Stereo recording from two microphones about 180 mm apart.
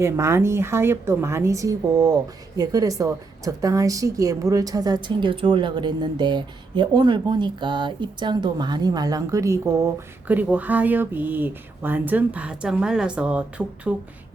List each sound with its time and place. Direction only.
0.0 s a woman's voice: 15° right (ahead or behind)